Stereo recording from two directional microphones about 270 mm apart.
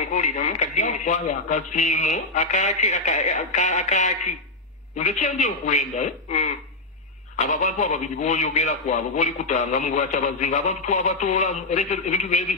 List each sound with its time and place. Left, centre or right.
0.1 s a man's voice: left